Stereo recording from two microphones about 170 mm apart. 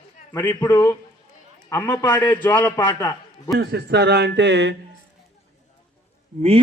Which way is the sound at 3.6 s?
80° right.